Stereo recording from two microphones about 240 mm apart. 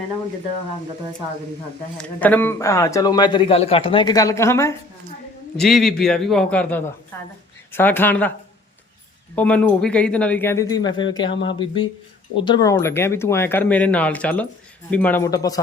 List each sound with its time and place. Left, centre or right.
2.0 s a man's voice: centre
5.5 s a man's voice: centre
9.3 s a man's voice: centre